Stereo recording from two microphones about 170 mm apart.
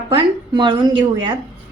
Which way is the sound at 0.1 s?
30° right (ahead or behind).